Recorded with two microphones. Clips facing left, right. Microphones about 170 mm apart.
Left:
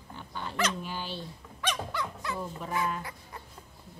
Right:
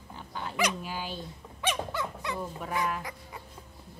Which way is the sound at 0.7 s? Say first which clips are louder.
Even; 5° right (ahead or behind).